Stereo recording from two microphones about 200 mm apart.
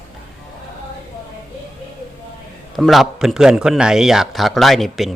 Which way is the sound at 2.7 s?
Centre (ahead or behind).